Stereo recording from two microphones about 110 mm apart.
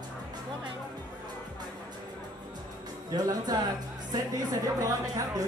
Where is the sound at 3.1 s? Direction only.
35° right (ahead or behind).